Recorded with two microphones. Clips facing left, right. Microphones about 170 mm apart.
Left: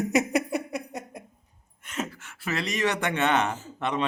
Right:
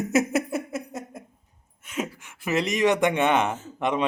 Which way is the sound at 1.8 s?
10° right (ahead or behind).